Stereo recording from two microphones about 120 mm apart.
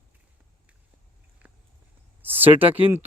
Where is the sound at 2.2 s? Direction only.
15° right (ahead or behind).